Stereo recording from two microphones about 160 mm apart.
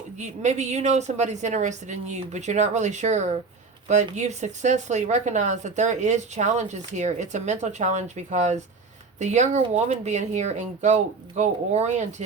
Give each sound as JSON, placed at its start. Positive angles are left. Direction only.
{"t": 0.2, "sound": "speech", "side_deg": -45}